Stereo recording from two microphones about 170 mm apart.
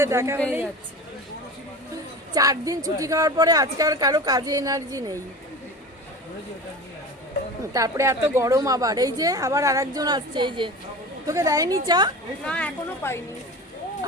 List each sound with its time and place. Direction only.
0.0 s a woman's voice: 15° right (ahead or behind)
2.3 s a woman's voice: 20° right (ahead or behind)
7.7 s a woman's voice: 20° right (ahead or behind)
12.5 s speech: 5° left (ahead or behind)